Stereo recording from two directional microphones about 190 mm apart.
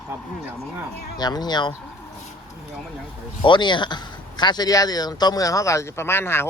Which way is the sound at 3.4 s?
25° left (ahead or behind).